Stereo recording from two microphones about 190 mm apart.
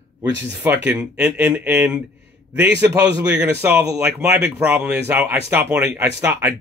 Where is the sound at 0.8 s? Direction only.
10° right (ahead or behind).